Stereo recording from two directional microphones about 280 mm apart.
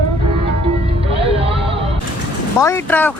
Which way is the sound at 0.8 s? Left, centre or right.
Centre.